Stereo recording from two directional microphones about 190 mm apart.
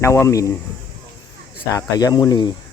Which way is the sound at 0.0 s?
15° left (ahead or behind).